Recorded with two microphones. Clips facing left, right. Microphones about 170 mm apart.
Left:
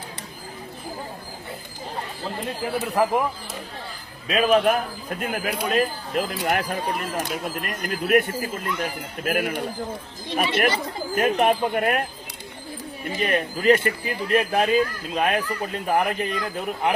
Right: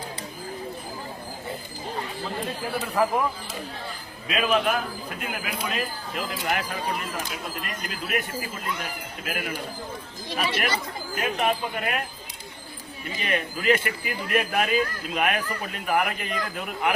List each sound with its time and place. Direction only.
2.7 s speech: 20° left (ahead or behind)
4.3 s speech: 35° left (ahead or behind)
13.1 s speech: 45° left (ahead or behind)